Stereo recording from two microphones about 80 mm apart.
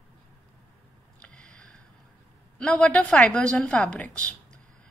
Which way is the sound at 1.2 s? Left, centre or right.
Centre.